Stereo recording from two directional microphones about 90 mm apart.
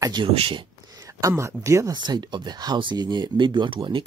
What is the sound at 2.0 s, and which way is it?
Speech, 55° right (ahead or behind).